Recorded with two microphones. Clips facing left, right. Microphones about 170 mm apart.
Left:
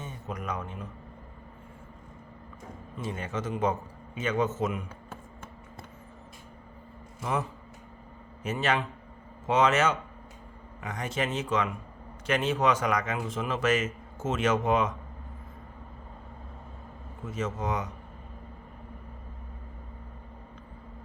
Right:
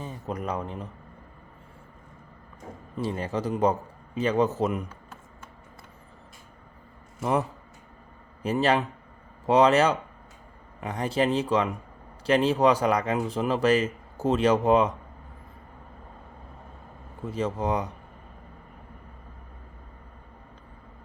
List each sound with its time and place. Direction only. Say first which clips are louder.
0.0 s speech: right 5 dB; 35° right (ahead or behind)
3.0 s speech: right 5 dB; 35° right (ahead or behind)
8.4 s speech: right 5 dB; 35° right (ahead or behind)
17.2 s speech: right 4 dB; 35° right (ahead or behind)